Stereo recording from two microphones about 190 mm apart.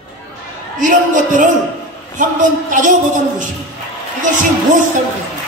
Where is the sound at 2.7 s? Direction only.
45° right (ahead or behind).